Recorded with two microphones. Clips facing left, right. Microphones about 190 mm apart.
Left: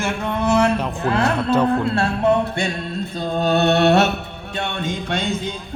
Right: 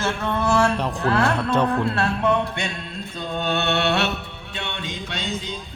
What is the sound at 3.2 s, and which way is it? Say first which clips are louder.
Mantra: left 6 dB; 35° left (ahead or behind).